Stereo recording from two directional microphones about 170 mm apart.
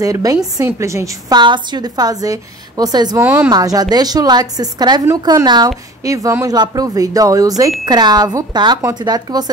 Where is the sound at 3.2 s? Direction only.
10° right (ahead or behind).